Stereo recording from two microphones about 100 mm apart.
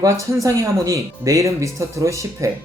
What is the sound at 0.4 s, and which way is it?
Speech, 30° right (ahead or behind).